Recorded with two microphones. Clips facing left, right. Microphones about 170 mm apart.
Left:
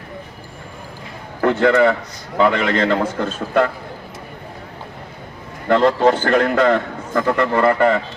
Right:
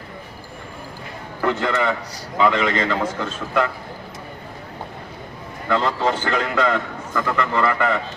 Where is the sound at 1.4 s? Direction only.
55° left (ahead or behind).